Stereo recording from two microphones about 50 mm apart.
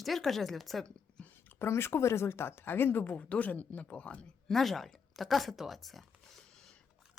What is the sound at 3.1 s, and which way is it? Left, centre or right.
Speech, left.